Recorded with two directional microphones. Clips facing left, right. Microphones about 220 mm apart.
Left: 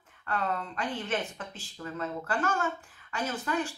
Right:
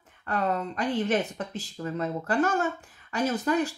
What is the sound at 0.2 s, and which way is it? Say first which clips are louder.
Speech: right 5 dB; 40° right (ahead or behind).